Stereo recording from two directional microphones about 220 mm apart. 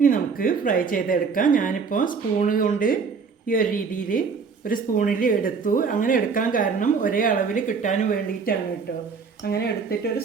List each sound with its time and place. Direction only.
0.0 s a woman's voice: 40° left (ahead or behind)